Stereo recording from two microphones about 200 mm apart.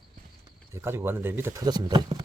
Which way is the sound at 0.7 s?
15° right (ahead or behind).